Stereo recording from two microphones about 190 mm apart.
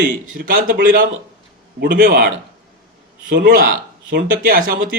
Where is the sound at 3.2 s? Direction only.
70° right (ahead or behind).